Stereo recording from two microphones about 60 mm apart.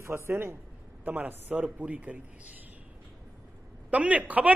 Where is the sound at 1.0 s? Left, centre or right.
Right.